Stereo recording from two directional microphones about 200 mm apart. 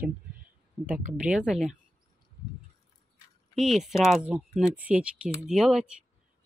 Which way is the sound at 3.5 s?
Centre (ahead or behind).